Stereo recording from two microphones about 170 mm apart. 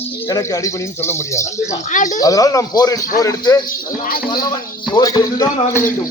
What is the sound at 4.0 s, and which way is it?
Speech, 55° left (ahead or behind).